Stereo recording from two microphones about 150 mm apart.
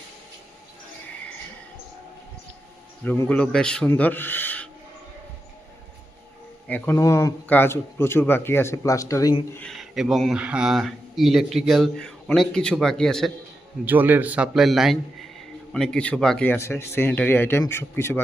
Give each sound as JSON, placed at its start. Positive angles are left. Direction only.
{"t": 3.0, "sound": "a man's voice", "side_deg": 10}
{"t": 6.7, "sound": "a man's voice", "side_deg": 10}
{"t": 9.6, "sound": "speech", "side_deg": 0}
{"t": 13.8, "sound": "a man's voice", "side_deg": -10}
{"t": 16.5, "sound": "a man's voice", "side_deg": 15}